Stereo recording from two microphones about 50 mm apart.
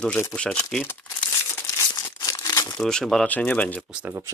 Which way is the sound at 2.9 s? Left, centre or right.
Centre.